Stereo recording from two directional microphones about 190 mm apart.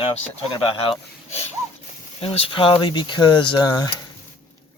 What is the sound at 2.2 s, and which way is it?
Speech, 30° left (ahead or behind).